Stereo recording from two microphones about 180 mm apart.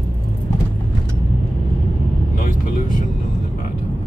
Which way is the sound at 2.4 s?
45° left (ahead or behind).